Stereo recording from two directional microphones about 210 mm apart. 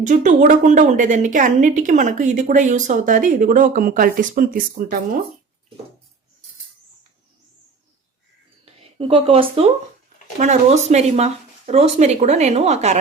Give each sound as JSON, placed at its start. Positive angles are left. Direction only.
{"t": 0.0, "sound": "a woman's voice", "side_deg": -35}
{"t": 8.8, "sound": "a woman's voice", "side_deg": -25}